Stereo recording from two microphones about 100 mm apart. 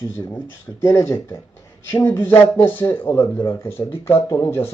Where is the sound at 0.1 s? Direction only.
20° left (ahead or behind).